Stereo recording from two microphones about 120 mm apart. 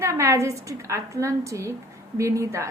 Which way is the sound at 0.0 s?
25° right (ahead or behind).